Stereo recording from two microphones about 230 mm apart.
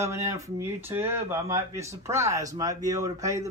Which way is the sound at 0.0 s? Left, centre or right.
Centre.